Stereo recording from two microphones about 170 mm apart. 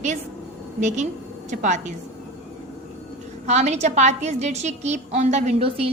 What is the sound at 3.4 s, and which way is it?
A woman's voice, 40° right (ahead or behind).